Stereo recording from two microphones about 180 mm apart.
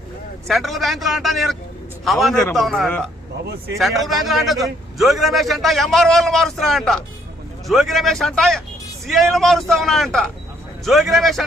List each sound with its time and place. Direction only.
0.4 s a man's voice: centre (ahead or behind)
3.4 s speech: 65° right (ahead or behind)
3.8 s a man's voice: centre (ahead or behind)